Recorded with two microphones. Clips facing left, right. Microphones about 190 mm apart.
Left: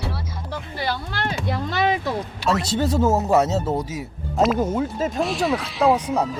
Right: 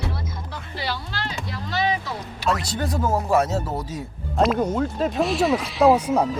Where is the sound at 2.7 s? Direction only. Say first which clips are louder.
Left 4 dB; 25° left (ahead or behind).